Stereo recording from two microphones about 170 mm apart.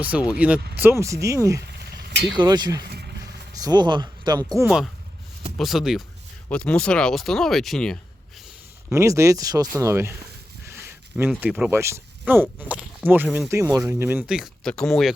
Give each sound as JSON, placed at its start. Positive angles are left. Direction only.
{"t": 0.0, "sound": "speech", "side_deg": -5}
{"t": 1.6, "sound": "a sound", "side_deg": -70}
{"t": 2.2, "sound": "speech", "side_deg": -25}
{"t": 5.5, "sound": "speech", "side_deg": 0}
{"t": 8.9, "sound": "speech", "side_deg": -15}
{"t": 10.8, "sound": "a sound", "side_deg": -15}
{"t": 11.3, "sound": "speech", "side_deg": -5}